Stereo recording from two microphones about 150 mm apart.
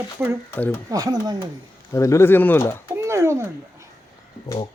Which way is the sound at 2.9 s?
20° right (ahead or behind).